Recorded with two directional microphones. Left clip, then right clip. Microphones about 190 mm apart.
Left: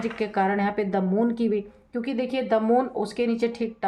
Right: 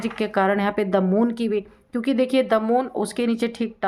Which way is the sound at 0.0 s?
40° right (ahead or behind).